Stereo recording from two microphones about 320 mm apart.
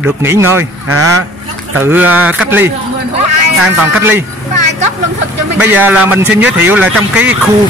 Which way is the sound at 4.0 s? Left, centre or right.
Centre.